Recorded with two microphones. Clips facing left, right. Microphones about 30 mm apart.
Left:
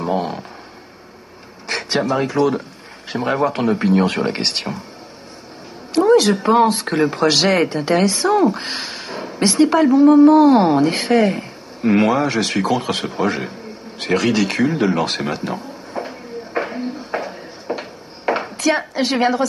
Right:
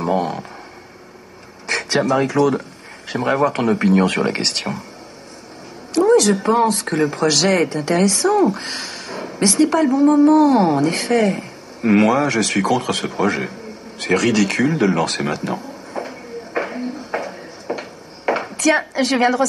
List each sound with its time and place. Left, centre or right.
0.0 s speech: centre
1.7 s a sound: centre
2.2 s speech: left
3.1 s speech: centre
3.4 s speech: centre
5.9 s speech: left
15.3 s a sound: centre